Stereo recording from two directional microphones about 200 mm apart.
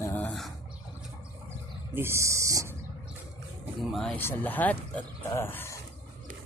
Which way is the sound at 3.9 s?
5° left (ahead or behind).